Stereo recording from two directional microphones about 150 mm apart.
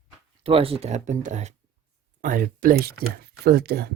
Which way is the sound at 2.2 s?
65° right (ahead or behind).